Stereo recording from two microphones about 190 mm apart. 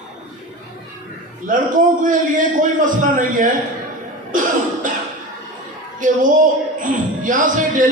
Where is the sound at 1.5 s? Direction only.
45° right (ahead or behind).